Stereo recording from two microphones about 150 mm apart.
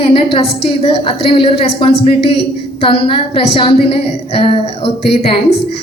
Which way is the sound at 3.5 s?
40° left (ahead or behind).